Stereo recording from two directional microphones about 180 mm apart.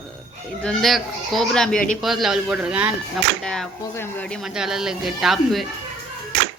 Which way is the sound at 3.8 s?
15° left (ahead or behind).